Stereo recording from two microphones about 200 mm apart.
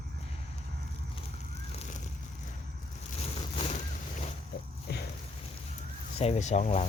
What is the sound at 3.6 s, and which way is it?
Boat, 35° left (ahead or behind).